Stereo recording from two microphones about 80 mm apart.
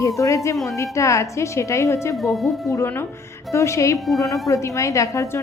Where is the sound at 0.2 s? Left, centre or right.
Left.